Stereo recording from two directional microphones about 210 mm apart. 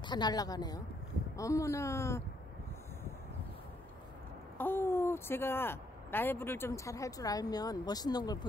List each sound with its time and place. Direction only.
0.0 s a woman's voice: 20° left (ahead or behind)
4.6 s speech: 10° left (ahead or behind)